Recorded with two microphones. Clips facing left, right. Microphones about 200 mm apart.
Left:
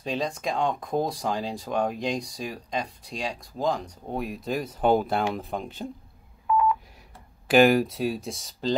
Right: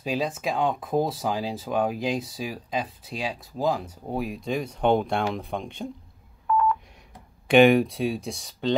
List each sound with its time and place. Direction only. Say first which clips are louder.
0.0 s speech: right 2 dB; 5° right (ahead or behind)
6.4 s telephone dialing: even; 10° left (ahead or behind)
7.4 s speech: right 2 dB; centre (ahead or behind)